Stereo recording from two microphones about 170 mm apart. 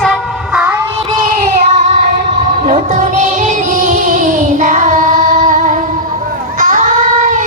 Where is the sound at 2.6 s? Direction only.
50° right (ahead or behind).